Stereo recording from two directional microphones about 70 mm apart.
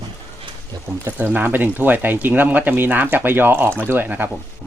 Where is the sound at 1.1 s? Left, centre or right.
Right.